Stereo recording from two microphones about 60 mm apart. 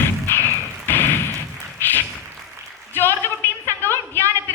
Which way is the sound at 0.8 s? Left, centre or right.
Left.